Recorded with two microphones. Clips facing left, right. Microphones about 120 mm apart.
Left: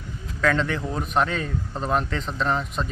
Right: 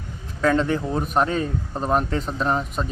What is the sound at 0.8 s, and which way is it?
Speech, 15° right (ahead or behind).